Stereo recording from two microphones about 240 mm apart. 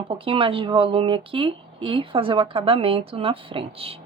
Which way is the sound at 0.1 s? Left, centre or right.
Right.